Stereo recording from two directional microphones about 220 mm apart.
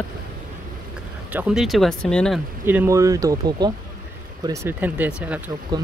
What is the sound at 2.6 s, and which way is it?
Speech, 10° right (ahead or behind).